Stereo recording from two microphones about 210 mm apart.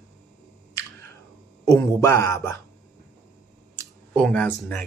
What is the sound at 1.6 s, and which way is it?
Speech, 15° left (ahead or behind).